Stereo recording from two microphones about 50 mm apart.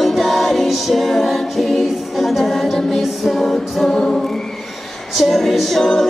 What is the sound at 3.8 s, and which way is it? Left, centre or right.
A capella, centre.